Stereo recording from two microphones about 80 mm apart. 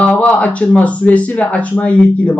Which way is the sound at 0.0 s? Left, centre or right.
Centre.